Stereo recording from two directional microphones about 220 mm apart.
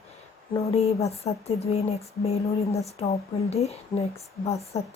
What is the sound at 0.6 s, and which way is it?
A woman's voice, 30° left (ahead or behind).